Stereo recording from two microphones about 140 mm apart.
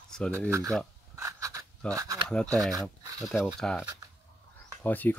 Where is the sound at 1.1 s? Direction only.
20° right (ahead or behind).